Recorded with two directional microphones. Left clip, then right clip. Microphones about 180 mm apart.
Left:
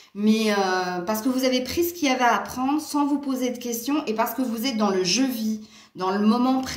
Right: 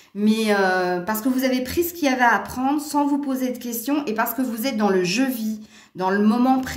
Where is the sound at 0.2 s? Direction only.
55° right (ahead or behind).